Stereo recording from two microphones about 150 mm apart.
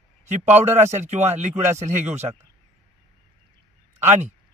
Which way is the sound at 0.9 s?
50° right (ahead or behind).